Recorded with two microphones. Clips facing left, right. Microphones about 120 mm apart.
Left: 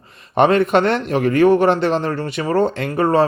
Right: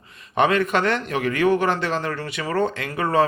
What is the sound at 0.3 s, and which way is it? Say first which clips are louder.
Speech: left 6 dB; 30° left (ahead or behind).